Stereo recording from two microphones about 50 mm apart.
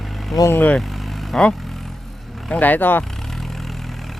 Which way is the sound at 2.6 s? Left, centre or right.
Left.